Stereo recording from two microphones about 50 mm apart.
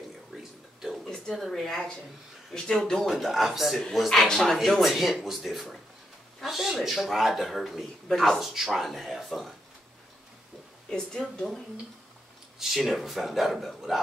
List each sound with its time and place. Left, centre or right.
0.3 s a sound: centre
1.0 s a sound: centre
1.3 s speech: centre
3.1 s speech: centre
10.9 s speech: centre
12.5 s speech: centre